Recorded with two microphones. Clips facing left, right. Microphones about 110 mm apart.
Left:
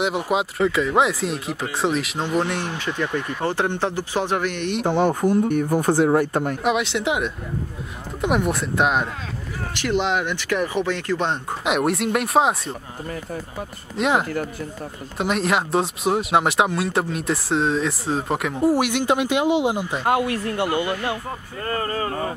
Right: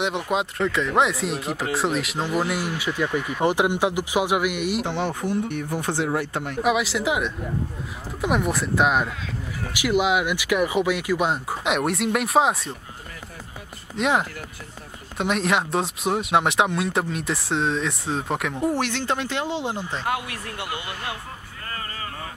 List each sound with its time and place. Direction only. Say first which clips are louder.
0.0 s speech: left 2 dB; centre (ahead or behind)
4.8 s speech: left 7 dB; 45° left (ahead or behind)
6.6 s speech: right 4 dB; centre (ahead or behind)
13.9 s speech: left 2 dB; centre (ahead or behind)
20.1 s speech: left 10 dB; 35° left (ahead or behind)